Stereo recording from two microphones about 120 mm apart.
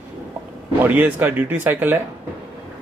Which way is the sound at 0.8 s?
15° right (ahead or behind).